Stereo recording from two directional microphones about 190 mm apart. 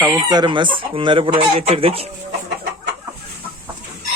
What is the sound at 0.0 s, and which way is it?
Speech, 20° right (ahead or behind).